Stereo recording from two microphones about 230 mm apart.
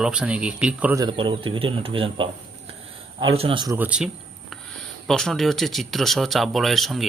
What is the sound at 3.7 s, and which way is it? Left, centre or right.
Speech, centre.